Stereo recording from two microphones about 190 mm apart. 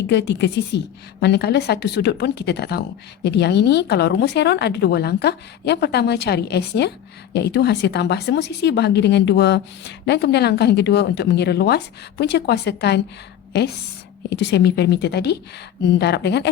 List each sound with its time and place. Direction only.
0.1 s a woman's voice: 65° left (ahead or behind)
14.3 s a woman's voice: 60° left (ahead or behind)